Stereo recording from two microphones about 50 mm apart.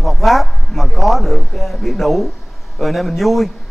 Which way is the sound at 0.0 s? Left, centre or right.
Centre.